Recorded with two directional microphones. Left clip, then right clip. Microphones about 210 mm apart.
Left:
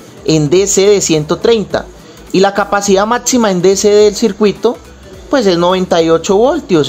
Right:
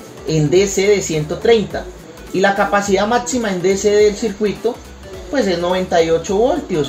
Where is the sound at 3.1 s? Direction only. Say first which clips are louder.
Left 6 dB; 30° left (ahead or behind).